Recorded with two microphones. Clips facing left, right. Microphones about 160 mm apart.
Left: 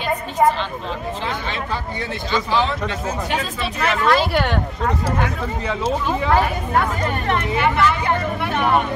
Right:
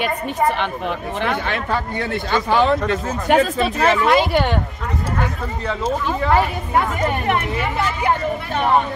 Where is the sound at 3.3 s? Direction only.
45° right (ahead or behind).